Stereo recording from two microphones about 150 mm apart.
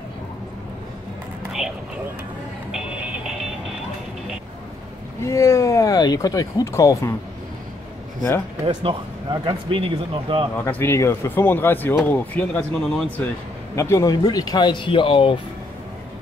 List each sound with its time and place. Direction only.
5.2 s speech: 20° left (ahead or behind)
8.6 s speech: 35° right (ahead or behind)
10.5 s speech: 15° left (ahead or behind)
13.7 s speech: 20° left (ahead or behind); by 15.3 s 35° left (ahead or behind)